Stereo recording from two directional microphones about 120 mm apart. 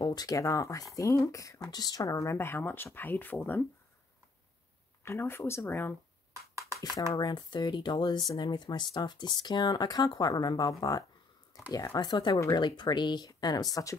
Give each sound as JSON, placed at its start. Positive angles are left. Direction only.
{"t": 0.0, "sound": "speech", "side_deg": 30}
{"t": 5.0, "sound": "speech", "side_deg": 20}
{"t": 7.2, "sound": "speech", "side_deg": 40}